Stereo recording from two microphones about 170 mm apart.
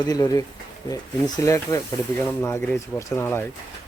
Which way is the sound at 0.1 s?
20° left (ahead or behind).